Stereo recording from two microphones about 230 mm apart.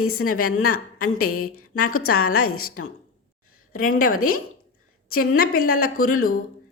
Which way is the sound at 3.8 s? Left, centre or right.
Left.